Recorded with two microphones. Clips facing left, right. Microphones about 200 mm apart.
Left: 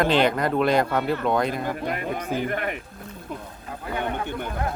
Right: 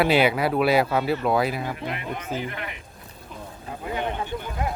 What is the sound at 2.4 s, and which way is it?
Speech, 50° left (ahead or behind).